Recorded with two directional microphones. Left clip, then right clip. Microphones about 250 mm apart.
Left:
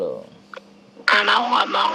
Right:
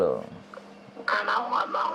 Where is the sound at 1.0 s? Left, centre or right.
Left.